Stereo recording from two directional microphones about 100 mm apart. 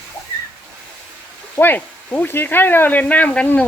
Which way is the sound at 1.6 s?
20° left (ahead or behind).